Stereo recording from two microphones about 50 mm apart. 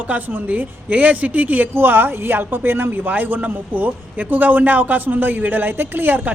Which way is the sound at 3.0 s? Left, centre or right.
Right.